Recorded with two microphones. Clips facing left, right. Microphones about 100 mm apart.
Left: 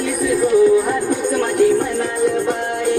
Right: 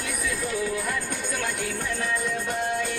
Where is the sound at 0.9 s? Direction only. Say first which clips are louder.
Left 12 dB; 50° left (ahead or behind).